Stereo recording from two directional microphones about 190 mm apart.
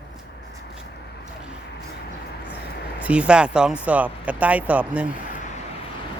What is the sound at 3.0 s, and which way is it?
A man's voice, 5° right (ahead or behind).